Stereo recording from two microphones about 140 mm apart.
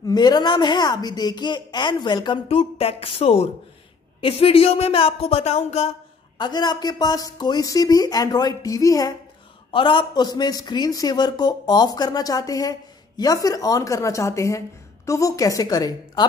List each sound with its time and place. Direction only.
0.0 s a woman's voice: 30° left (ahead or behind); by 5.9 s 50° left (ahead or behind)
6.3 s a man's voice: 30° left (ahead or behind)
9.7 s a man's voice: 35° left (ahead or behind)